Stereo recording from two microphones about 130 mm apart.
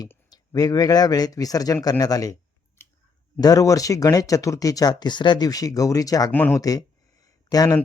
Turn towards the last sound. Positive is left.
turn(degrees=30)  # may be behind; listen again after turning